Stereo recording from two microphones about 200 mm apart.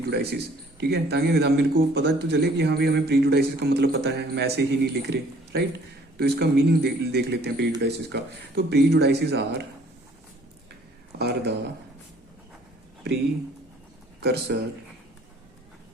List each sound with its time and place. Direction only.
0.0 s a man's voice: 55° right (ahead or behind)
11.2 s speech: 55° right (ahead or behind)
14.2 s a man's voice: 55° right (ahead or behind)